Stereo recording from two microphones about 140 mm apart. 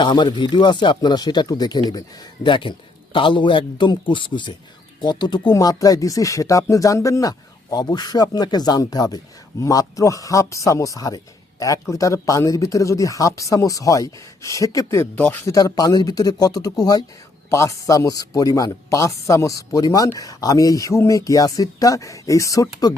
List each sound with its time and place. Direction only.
0.0 s speech: 30° left (ahead or behind); by 15.5 s 15° left (ahead or behind)
15.5 s speech: 25° left (ahead or behind)